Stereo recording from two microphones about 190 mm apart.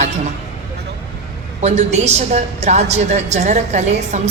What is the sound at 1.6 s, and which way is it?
A woman's voice, 35° right (ahead or behind).